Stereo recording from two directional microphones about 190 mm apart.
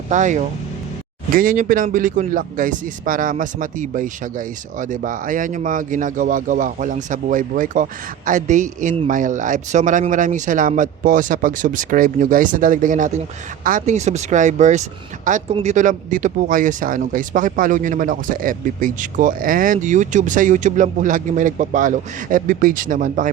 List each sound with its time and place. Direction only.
0.1 s speech: 40° right (ahead or behind)